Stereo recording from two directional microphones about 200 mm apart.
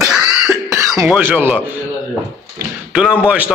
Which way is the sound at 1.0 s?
10° right (ahead or behind).